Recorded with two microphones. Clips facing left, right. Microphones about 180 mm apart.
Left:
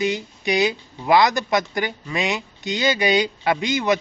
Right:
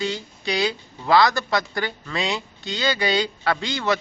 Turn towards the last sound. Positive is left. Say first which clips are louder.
# left 3 dB
turn(degrees=20)  # may be behind; listen again after turning